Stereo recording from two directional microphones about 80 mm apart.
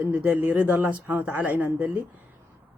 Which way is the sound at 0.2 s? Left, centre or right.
Right.